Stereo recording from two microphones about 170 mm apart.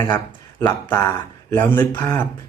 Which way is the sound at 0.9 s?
15° left (ahead or behind).